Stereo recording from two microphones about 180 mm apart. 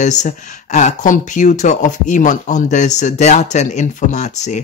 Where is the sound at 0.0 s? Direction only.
40° left (ahead or behind).